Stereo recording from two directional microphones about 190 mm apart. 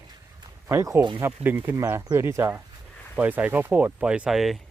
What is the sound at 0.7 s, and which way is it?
Speech, 15° right (ahead or behind).